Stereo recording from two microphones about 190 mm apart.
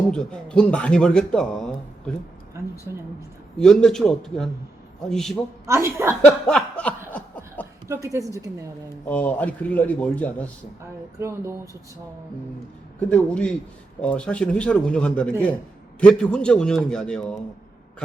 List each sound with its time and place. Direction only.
0.1 s speech: 5° left (ahead or behind)
3.6 s speech: 5° left (ahead or behind)
5.6 s a woman's voice: 15° right (ahead or behind)
6.5 s a man's voice: 5° left (ahead or behind)
7.1 s chuckle: 10° left (ahead or behind)
7.9 s a woman's voice: 15° right (ahead or behind)
9.0 s a man's voice: 10° left (ahead or behind)
11.2 s a woman's voice: 15° right (ahead or behind)
13.1 s speech: 5° left (ahead or behind)